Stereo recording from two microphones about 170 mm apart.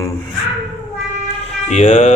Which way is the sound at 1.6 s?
40° left (ahead or behind).